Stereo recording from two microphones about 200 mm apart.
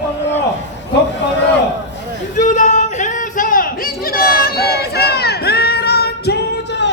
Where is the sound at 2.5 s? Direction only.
40° left (ahead or behind).